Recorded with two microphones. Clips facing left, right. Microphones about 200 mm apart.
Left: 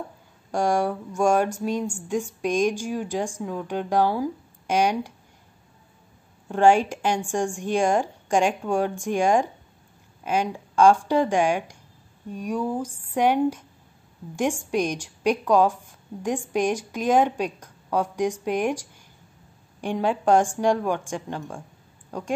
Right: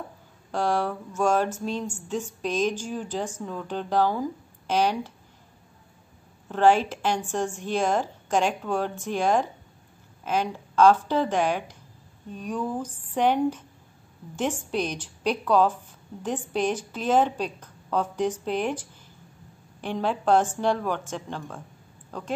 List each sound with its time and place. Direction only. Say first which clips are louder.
0.5 s speech: left 3 dB; 10° left (ahead or behind)
6.5 s speech: left 2 dB; 15° left (ahead or behind)